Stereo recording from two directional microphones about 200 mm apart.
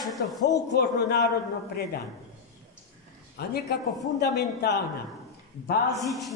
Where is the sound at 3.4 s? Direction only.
50° left (ahead or behind).